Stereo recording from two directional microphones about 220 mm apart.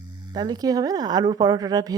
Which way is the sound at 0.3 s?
20° right (ahead or behind).